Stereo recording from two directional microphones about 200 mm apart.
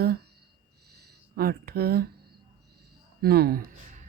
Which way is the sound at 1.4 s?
50° right (ahead or behind).